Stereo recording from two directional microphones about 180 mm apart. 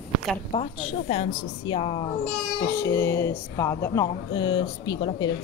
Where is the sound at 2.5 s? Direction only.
15° left (ahead or behind).